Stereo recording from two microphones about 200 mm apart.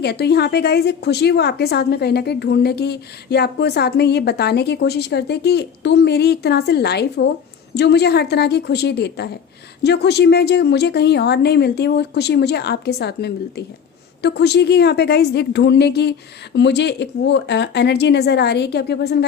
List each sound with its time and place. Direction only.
0.0 s a woman's voice: 55° left (ahead or behind)